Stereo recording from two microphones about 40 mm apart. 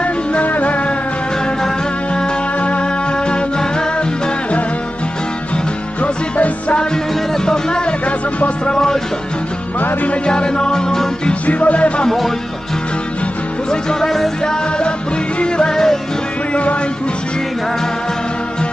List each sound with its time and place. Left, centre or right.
0.0 s music: left
2.6 s music: left
6.0 s music: left
7.4 s music: centre
10.2 s music: left
11.4 s music: left
13.7 s music: centre
14.4 s music: left